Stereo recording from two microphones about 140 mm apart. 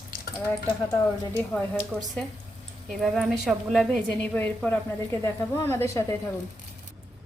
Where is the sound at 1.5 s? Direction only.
10° left (ahead or behind).